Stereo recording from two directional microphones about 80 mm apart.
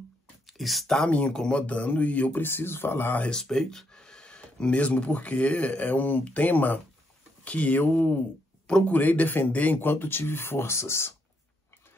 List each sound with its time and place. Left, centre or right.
0.5 s speech: centre; by 3.3 s left
3.3 s speech: centre; by 11.1 s left